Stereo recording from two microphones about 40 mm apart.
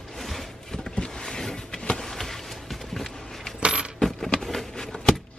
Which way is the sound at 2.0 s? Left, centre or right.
Centre.